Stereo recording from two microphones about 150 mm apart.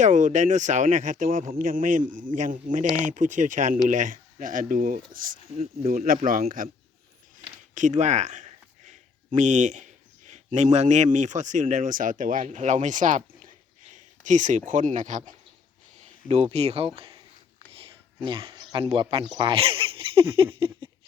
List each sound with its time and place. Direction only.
0.0 s speech: 55° right (ahead or behind)
7.7 s speech: 55° right (ahead or behind); by 17.2 s 40° right (ahead or behind)
18.3 s speech: 35° right (ahead or behind)